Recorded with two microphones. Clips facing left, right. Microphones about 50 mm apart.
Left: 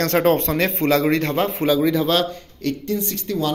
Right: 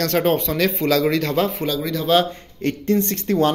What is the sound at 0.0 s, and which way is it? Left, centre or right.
Speech, left.